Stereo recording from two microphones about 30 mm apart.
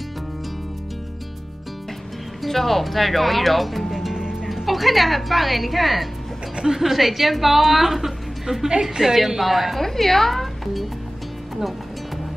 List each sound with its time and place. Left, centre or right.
2.4 s a woman's voice: centre
3.9 s music: centre
4.6 s a woman's voice: centre
9.0 s a woman's voice: right
9.4 s a woman's voice: centre
9.8 s speech: centre